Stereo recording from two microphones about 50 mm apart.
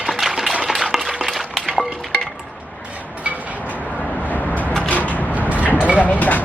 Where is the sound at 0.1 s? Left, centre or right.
Centre.